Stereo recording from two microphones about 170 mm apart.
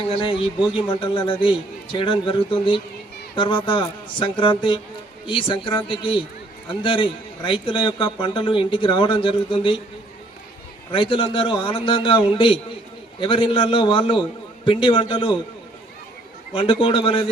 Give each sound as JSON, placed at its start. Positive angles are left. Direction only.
{"t": 0.1, "sound": "a man's voice", "side_deg": 30}
{"t": 10.9, "sound": "a man's voice", "side_deg": 30}
{"t": 16.6, "sound": "a man's voice", "side_deg": 30}